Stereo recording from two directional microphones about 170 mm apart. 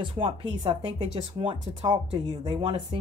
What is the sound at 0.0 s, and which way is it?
Speech, 30° right (ahead or behind).